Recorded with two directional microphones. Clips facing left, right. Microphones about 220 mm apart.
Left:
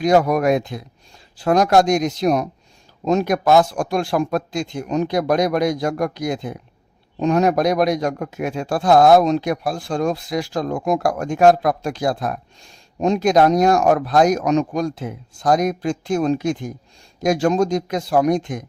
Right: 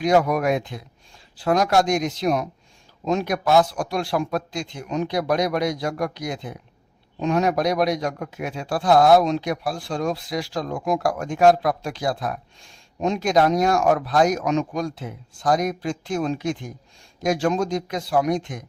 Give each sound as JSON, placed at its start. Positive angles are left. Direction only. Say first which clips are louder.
{"t": 0.0, "sound": "a man's voice", "louder": "left 3 dB", "side_deg": 40}